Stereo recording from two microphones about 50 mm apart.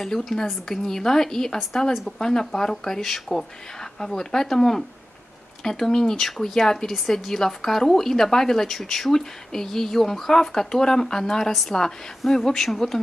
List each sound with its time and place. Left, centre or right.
0.0 s a woman's voice: centre